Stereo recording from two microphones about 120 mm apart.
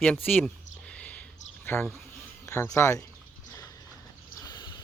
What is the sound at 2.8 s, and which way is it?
Speech, 25° left (ahead or behind).